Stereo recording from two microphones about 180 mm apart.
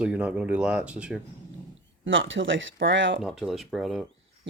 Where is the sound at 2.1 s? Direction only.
90° right.